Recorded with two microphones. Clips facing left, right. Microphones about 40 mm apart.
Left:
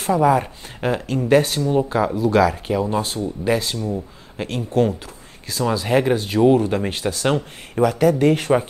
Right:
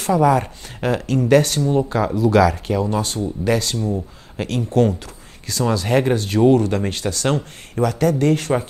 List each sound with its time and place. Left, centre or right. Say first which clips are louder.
0.0 s speech: right 1 dB; centre
3.7 s speech: right 2 dB; centre